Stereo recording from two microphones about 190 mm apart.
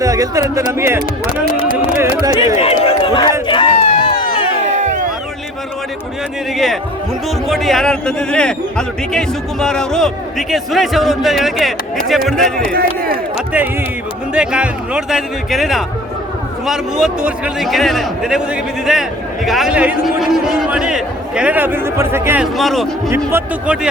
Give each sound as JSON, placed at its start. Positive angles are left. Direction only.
{"t": 0.0, "sound": "speech", "side_deg": -15}
{"t": 2.0, "sound": "a sound", "side_deg": -15}
{"t": 2.6, "sound": "a sound", "side_deg": 30}
{"t": 3.4, "sound": "crowd", "side_deg": 25}
{"t": 4.7, "sound": "a sound", "side_deg": -40}
{"t": 7.4, "sound": "a man's voice", "side_deg": 0}
{"t": 12.7, "sound": "speech", "side_deg": -50}
{"t": 14.3, "sound": "a man's voice", "side_deg": -5}
{"t": 22.5, "sound": "a man's voice", "side_deg": 0}
{"t": 23.0, "sound": "speech", "side_deg": -10}